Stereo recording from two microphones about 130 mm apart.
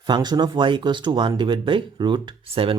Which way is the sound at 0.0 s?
35° right (ahead or behind).